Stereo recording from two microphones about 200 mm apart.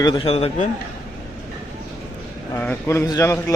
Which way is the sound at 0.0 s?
25° left (ahead or behind).